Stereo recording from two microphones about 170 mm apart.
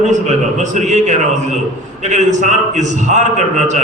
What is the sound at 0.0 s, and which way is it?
A man's voice, 45° right (ahead or behind).